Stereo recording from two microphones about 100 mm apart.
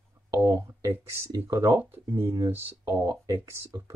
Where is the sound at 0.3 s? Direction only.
30° right (ahead or behind).